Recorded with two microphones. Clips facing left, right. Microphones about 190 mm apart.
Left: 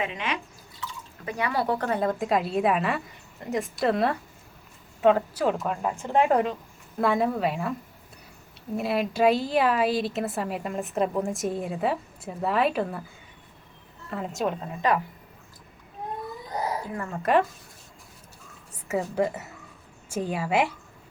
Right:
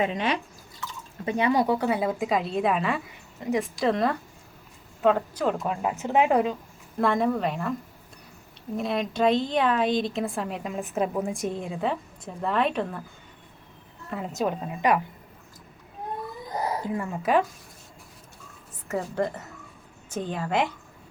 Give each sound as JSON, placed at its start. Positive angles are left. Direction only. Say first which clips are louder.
{"t": 0.0, "sound": "speech", "louder": "right 5 dB", "side_deg": -35}
{"t": 1.2, "sound": "a woman's voice", "louder": "right 5 dB", "side_deg": -25}
{"t": 14.1, "sound": "a woman's voice", "louder": "even", "side_deg": 0}
{"t": 14.8, "sound": "a woman's voice", "louder": "right 1 dB", "side_deg": -15}
{"t": 16.9, "sound": "a woman's voice", "louder": "right 3 dB", "side_deg": -10}
{"t": 18.9, "sound": "a woman's voice", "louder": "left 2 dB", "side_deg": 5}